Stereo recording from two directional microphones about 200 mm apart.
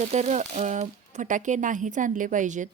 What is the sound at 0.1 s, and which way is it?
A woman's voice, 35° right (ahead or behind).